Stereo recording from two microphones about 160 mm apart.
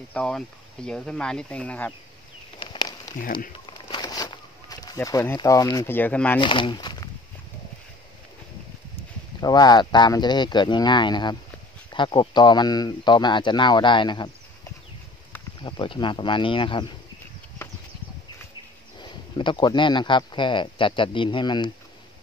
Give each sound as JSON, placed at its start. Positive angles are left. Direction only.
{"t": 0.1, "sound": "speech", "side_deg": 5}
{"t": 2.6, "sound": "a sound", "side_deg": 30}
{"t": 3.2, "sound": "speech", "side_deg": 60}
{"t": 3.5, "sound": "a sound", "side_deg": 30}
{"t": 4.9, "sound": "speech", "side_deg": 15}
{"t": 6.4, "sound": "speech", "side_deg": 30}
{"t": 9.4, "sound": "speech", "side_deg": 25}
{"t": 15.6, "sound": "speech", "side_deg": 30}
{"t": 18.9, "sound": "speech", "side_deg": 30}